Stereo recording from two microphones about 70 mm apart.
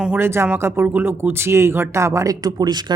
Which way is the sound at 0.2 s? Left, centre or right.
Right.